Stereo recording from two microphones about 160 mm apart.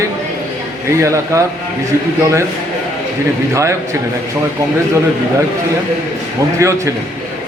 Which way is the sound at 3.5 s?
20° right (ahead or behind).